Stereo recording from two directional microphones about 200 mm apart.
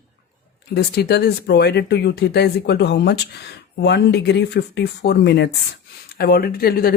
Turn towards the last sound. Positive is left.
turn(degrees=50)  # may be behind; listen again after turning